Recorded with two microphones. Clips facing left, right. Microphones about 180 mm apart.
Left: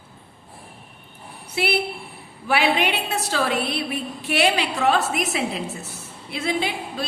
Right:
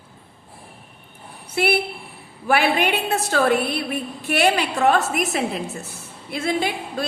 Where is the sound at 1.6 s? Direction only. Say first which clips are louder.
Right 2 dB; 50° right (ahead or behind).